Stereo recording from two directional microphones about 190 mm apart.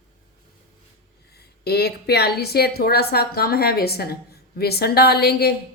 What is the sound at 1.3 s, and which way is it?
A woman's voice, 55° left (ahead or behind).